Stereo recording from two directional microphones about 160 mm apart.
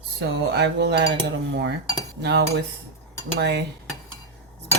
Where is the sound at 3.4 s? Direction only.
90° right.